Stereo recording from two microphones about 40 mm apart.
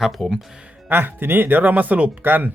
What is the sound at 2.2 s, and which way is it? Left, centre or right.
Speech, right.